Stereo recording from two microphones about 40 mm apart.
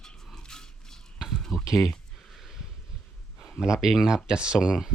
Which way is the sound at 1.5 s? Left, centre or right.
Centre.